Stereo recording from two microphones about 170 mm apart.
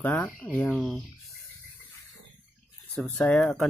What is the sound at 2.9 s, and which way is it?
Speech, centre (ahead or behind).